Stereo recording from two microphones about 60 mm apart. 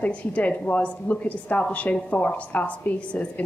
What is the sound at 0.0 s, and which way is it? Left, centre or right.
A woman's voice, left.